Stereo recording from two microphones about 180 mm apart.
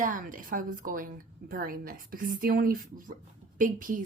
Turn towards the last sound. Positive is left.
turn(degrees=-50)  # may be behind; listen again after turning